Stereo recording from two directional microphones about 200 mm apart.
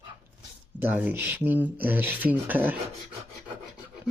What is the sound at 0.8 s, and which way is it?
Speech, 10° right (ahead or behind).